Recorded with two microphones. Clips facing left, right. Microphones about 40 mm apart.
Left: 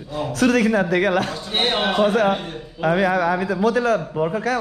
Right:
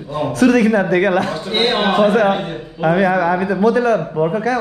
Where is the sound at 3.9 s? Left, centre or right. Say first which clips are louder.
Right 4 dB; right.